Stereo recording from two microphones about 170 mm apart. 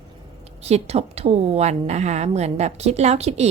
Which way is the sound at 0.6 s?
40° right (ahead or behind).